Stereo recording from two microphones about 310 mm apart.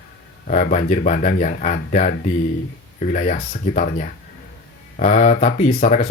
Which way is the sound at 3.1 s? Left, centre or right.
Left.